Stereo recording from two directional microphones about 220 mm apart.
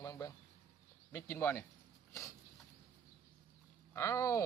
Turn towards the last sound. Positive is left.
turn(degrees=15)  # may be behind; listen again after turning